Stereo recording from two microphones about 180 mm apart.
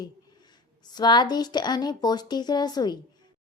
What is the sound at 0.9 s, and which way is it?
A woman's voice, 25° left (ahead or behind).